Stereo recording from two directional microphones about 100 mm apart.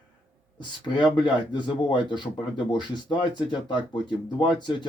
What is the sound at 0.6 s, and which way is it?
Speech, 50° left (ahead or behind).